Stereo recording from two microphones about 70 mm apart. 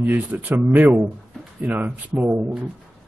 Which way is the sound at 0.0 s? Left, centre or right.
Right.